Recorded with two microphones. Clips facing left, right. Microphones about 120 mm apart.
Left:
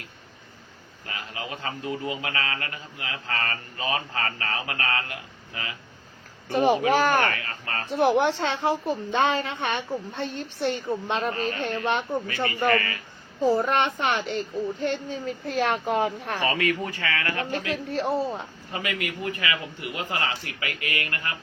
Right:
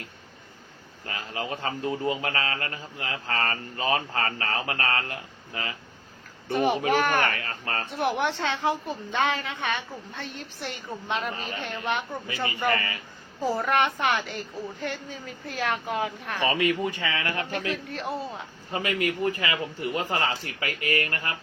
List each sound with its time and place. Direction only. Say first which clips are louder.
1.0 s a man's voice: right 3 dB; 30° right (ahead or behind)
6.5 s a woman's voice: left 3 dB; 30° left (ahead or behind)
7.3 s a man's voice: even; 30° right (ahead or behind)
7.9 s a woman's voice: left 6 dB; 30° left (ahead or behind)
12.6 s speech: left 3 dB; 20° right (ahead or behind)
13.4 s a woman's voice: left 3 dB; 25° left (ahead or behind)
16.4 s speech: right 2 dB; 20° right (ahead or behind)
17.7 s a woman's voice: left 4 dB; 40° left (ahead or behind)
18.7 s a man's voice: right 4 dB; 30° right (ahead or behind)